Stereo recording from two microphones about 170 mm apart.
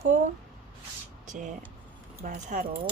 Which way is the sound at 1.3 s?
45° right (ahead or behind).